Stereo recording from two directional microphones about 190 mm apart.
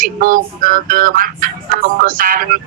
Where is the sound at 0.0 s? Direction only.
45° right (ahead or behind).